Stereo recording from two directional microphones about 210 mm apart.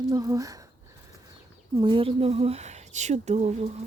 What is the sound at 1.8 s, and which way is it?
A woman's voice, 25° right (ahead or behind).